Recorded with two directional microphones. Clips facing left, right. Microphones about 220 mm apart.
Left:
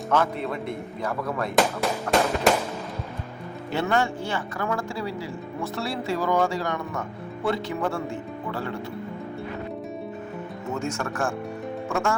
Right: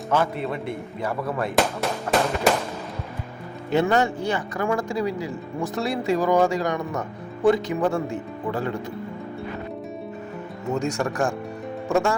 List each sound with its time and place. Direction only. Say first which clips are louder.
0.1 s speech: right 1 dB; 5° right (ahead or behind)
3.7 s speech: right 4 dB; 20° right (ahead or behind)
10.8 s speech: right 4 dB; 15° right (ahead or behind)